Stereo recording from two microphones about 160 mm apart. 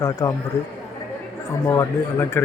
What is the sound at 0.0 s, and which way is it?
Speech, 20° left (ahead or behind).